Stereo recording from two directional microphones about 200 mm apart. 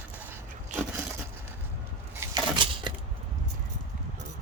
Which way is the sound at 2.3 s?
25° right (ahead or behind).